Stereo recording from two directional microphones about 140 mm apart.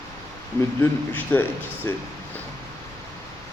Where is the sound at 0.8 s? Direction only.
15° left (ahead or behind).